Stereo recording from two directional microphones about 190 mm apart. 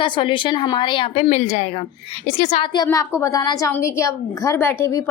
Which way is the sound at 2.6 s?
20° left (ahead or behind).